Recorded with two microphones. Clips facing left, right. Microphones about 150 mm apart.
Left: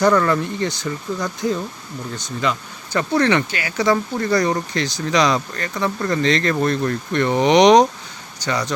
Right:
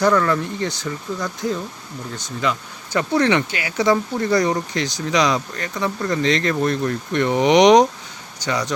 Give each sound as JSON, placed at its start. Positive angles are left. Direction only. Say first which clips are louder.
{"t": 0.0, "sound": "speech", "louder": "left 1 dB", "side_deg": 5}